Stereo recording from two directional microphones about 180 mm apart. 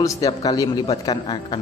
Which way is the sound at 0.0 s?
20° left (ahead or behind).